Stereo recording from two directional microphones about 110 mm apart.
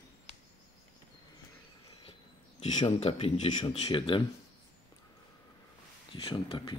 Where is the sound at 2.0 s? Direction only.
65° left (ahead or behind).